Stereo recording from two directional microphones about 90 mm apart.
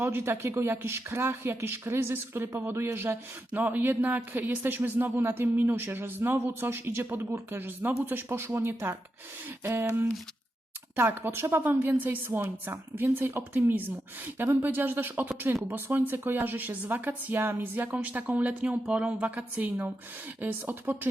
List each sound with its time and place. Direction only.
0.0 s speech: 25° right (ahead or behind)
10.9 s a woman's voice: 25° right (ahead or behind)